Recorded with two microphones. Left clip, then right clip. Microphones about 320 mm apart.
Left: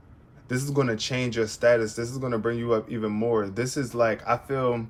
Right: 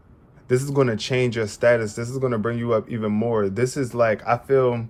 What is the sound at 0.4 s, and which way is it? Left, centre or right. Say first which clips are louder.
Speech: right 6 dB; right.